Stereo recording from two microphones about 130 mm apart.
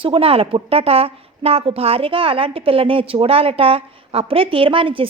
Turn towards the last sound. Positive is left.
turn(degrees=-45)  # may be behind; listen again after turning